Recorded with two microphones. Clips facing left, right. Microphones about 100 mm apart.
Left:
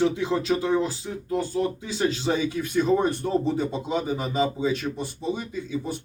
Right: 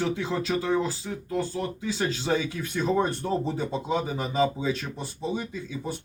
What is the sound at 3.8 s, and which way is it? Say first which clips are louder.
Speech: left 1 dB; 20° left (ahead or behind).